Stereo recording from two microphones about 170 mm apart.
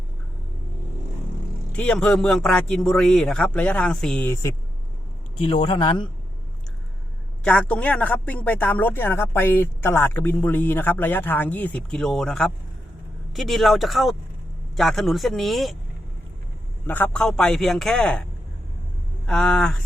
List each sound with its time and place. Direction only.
1.7 s a man's voice: 5° left (ahead or behind)
5.5 s speech: 30° left (ahead or behind)
7.4 s a man's voice: 5° left (ahead or behind)
16.8 s a man's voice: 10° left (ahead or behind)